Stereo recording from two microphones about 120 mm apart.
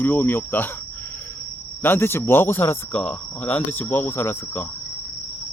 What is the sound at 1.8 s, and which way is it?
Speech, 20° left (ahead or behind).